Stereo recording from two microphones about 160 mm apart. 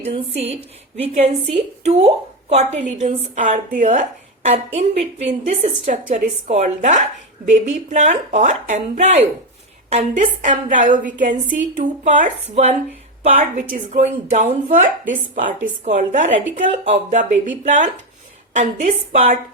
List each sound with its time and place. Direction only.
0.0 s a woman's voice: 40° right (ahead or behind)